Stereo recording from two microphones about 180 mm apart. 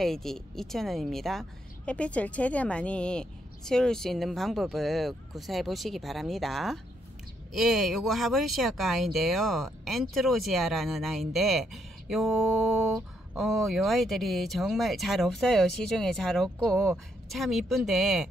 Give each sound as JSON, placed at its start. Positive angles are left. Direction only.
{"t": 0.0, "sound": "speech", "side_deg": 0}